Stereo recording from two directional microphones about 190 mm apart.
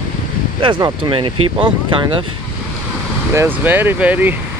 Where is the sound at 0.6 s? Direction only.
25° right (ahead or behind).